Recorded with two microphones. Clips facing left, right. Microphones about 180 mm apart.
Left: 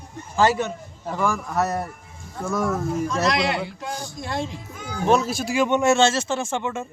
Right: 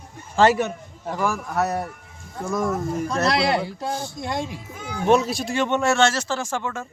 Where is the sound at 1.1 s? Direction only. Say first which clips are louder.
Even; centre (ahead or behind).